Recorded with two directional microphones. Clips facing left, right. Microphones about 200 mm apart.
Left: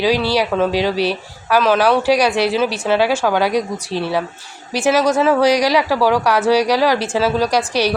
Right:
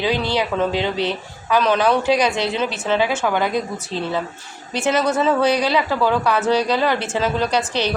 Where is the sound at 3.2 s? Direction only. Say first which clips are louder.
Left 4 dB; 90° left.